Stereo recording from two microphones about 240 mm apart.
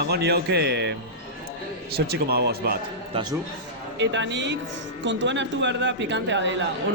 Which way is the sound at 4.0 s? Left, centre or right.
Right.